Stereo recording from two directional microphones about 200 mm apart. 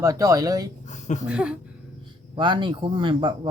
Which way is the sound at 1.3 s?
5° right (ahead or behind).